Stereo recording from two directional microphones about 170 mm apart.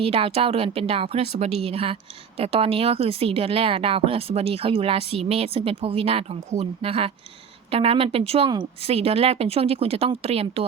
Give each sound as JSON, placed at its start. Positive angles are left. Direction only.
{"t": 0.0, "sound": "speech", "side_deg": -35}